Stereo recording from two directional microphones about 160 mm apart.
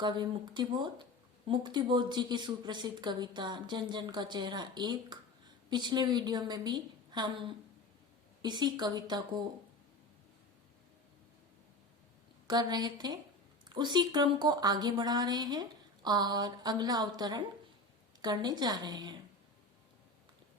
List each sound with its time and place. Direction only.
0.0 s speech: 30° right (ahead or behind)
12.5 s speech: 25° right (ahead or behind)